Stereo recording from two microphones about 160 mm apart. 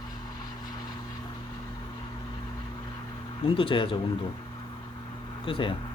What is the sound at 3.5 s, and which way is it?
Speech, 30° left (ahead or behind).